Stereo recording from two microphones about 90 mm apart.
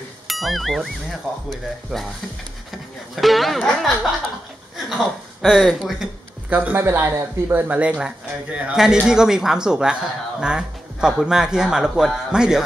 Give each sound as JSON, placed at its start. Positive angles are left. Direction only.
{"t": 0.3, "sound": "speech", "side_deg": 0}
{"t": 3.2, "sound": "speech", "side_deg": 0}
{"t": 6.5, "sound": "speech", "side_deg": -20}